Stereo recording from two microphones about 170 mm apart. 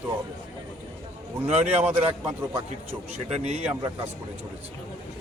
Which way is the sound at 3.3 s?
40° right (ahead or behind).